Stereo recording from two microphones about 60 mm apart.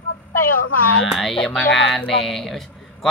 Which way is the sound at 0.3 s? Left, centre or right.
Left.